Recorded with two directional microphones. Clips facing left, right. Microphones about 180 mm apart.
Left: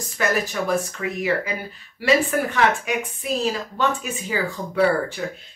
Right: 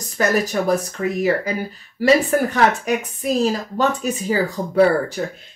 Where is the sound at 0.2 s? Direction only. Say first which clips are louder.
Right 4 dB; 40° right (ahead or behind).